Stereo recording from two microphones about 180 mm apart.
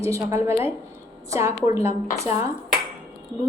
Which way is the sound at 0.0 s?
15° right (ahead or behind).